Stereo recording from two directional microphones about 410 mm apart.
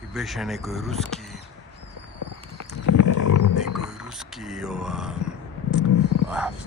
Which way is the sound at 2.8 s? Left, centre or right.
Left.